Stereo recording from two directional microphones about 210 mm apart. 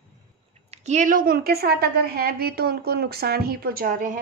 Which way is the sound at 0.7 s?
35° right (ahead or behind).